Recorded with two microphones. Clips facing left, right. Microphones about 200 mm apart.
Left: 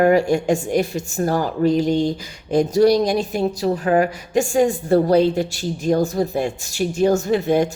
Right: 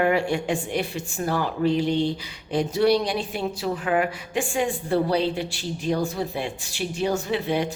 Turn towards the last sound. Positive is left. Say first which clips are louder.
# left 7 dB
turn(degrees=45)  # may be behind; listen again after turning